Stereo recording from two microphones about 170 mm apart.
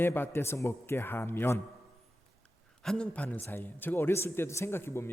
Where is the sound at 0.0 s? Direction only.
15° left (ahead or behind).